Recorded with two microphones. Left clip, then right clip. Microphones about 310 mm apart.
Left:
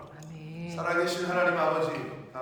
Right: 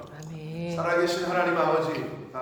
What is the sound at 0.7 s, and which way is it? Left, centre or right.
Speech, centre.